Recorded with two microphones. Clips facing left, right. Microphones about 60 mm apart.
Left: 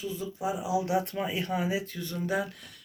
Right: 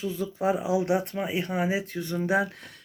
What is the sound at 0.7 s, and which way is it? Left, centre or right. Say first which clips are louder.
Speech: right 2 dB; right.